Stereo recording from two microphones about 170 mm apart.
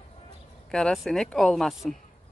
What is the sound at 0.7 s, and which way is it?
Speech, 5° left (ahead or behind).